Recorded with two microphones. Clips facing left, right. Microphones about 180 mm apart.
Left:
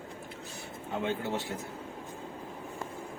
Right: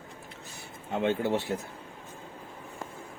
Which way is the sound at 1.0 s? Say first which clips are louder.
Right 6 dB; 65° right (ahead or behind).